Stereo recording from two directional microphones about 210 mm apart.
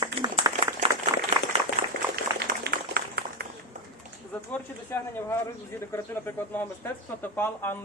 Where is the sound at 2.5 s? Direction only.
45° right (ahead or behind).